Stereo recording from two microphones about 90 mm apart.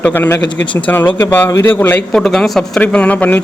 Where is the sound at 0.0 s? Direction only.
25° left (ahead or behind).